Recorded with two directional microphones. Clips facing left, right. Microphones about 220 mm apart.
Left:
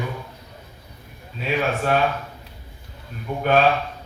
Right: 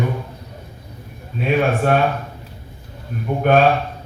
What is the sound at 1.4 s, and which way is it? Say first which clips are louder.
Speech: right 5 dB; 50° right (ahead or behind).